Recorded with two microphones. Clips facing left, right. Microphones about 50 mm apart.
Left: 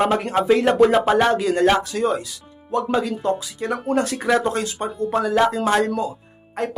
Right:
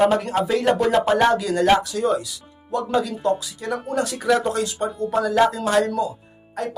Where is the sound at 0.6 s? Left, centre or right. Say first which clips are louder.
Left 3 dB; centre.